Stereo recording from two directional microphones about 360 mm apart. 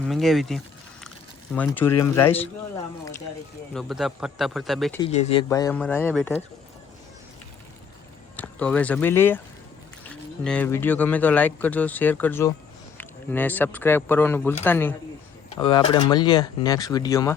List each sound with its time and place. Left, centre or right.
0.0 s speech: centre
3.8 s speech: centre
4.9 s speech: centre
8.4 s speech: centre